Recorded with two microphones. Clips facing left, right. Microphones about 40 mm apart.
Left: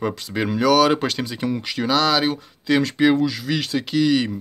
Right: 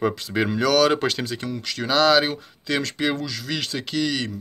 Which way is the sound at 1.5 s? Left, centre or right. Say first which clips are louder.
Left 4 dB; centre.